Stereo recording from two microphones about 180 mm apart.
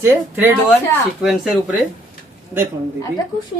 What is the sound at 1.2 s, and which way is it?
Speech, centre (ahead or behind).